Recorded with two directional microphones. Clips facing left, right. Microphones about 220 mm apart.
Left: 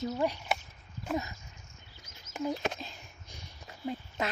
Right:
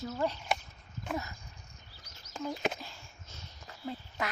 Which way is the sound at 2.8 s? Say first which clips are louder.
Left 3 dB; 20° left (ahead or behind).